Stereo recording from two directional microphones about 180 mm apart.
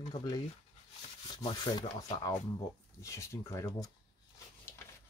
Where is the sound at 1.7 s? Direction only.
20° left (ahead or behind).